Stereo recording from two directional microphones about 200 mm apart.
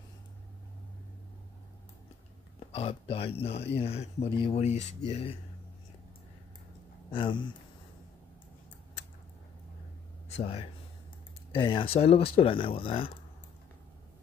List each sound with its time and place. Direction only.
2.7 s speech: 30° left (ahead or behind)
7.1 s speech: 25° left (ahead or behind)
10.2 s speech: 30° left (ahead or behind)